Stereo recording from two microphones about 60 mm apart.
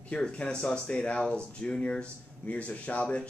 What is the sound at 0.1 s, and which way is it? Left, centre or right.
Speech, centre.